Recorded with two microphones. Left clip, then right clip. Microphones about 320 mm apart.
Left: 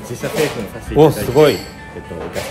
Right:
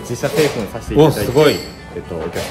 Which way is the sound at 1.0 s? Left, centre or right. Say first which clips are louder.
Left 1 dB; centre.